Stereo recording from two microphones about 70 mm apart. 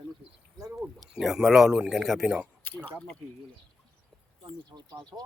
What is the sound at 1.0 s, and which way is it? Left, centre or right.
Speech, centre.